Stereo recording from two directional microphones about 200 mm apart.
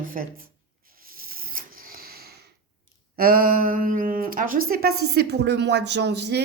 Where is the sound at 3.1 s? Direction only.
45° right (ahead or behind).